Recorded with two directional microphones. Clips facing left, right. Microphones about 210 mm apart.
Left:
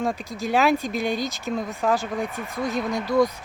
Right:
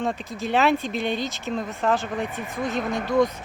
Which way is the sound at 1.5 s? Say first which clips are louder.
Even; centre (ahead or behind).